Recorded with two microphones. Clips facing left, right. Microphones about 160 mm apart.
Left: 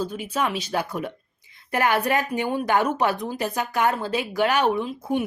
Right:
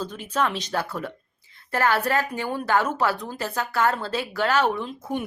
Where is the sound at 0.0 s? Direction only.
10° left (ahead or behind).